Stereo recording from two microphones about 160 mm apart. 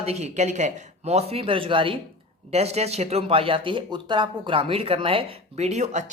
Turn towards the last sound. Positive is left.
turn(degrees=-50)  # may be behind; listen again after turning